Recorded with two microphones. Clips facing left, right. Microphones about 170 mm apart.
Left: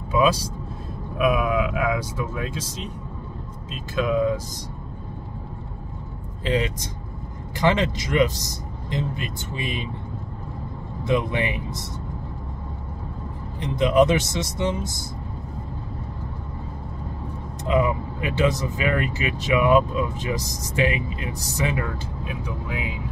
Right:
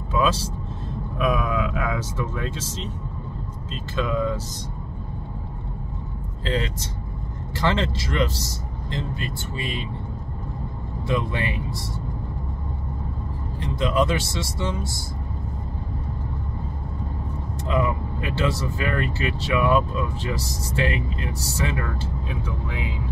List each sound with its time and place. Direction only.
0.1 s speech: 10° left (ahead or behind)
6.4 s speech: 15° left (ahead or behind)
11.1 s speech: 20° left (ahead or behind)
13.6 s speech: 20° left (ahead or behind)
17.6 s speech: 20° left (ahead or behind)